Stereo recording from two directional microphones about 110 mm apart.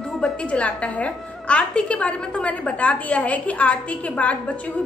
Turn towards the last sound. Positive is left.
turn(degrees=10)  # may be behind; listen again after turning